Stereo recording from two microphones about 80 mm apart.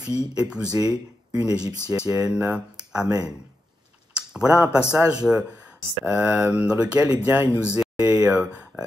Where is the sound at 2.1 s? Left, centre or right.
Centre.